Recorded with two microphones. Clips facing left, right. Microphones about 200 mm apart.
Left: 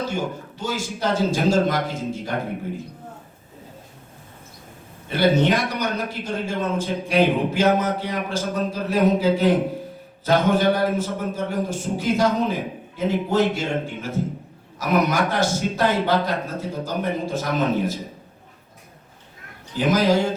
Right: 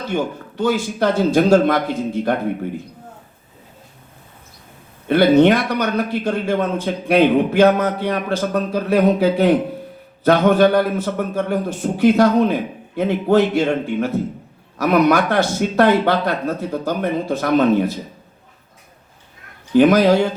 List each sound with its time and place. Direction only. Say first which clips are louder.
0.1 s a man's voice: right 5 dB; 60° right (ahead or behind)
5.0 s a man's voice: right 7 dB; 60° right (ahead or behind)
19.7 s a man's voice: right 7 dB; 60° right (ahead or behind)